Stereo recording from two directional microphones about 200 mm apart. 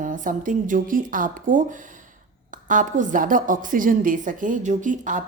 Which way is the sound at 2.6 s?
40° right (ahead or behind).